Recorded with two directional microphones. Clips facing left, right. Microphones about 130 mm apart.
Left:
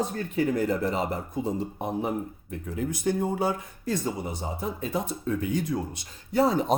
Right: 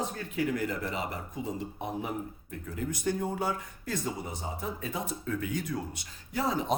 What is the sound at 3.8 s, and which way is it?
Speech, 30° left (ahead or behind).